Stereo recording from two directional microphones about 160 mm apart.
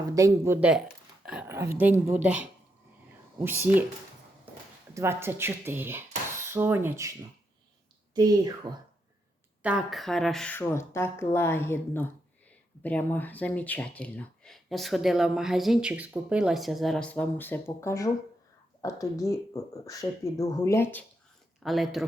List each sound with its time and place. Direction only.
0.1 s speech: 20° right (ahead or behind)
1.2 s speech: 5° right (ahead or behind)
1.5 s speech: 15° right (ahead or behind)
4.9 s speech: 15° right (ahead or behind)
9.6 s speech: 5° right (ahead or behind); by 21.0 s 15° left (ahead or behind)
21.6 s speech: centre (ahead or behind)